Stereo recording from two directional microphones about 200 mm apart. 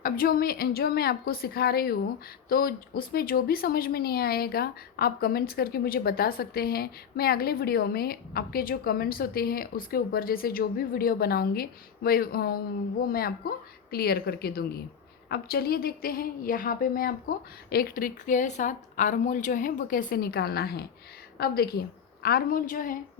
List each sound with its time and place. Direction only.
0.0 s a woman's voice: 45° left (ahead or behind)